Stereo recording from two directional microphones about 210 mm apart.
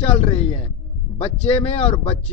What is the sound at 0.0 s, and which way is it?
A man's voice, 25° left (ahead or behind).